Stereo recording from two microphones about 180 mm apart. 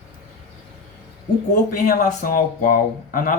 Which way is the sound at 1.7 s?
50° left (ahead or behind).